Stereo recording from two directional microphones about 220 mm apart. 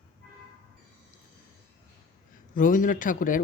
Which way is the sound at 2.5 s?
35° left (ahead or behind).